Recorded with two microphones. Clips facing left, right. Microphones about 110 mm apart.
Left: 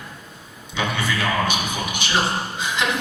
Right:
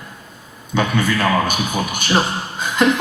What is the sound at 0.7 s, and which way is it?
A woman's voice, 45° right (ahead or behind).